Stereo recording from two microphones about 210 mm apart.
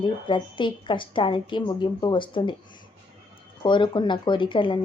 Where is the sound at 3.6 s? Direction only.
20° left (ahead or behind).